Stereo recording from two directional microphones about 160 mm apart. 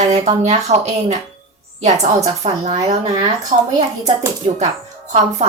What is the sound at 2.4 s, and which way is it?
A woman's voice, 40° right (ahead or behind).